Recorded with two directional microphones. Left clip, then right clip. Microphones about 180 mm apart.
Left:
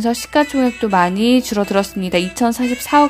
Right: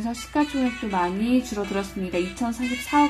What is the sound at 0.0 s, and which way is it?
A woman's voice, 50° left (ahead or behind).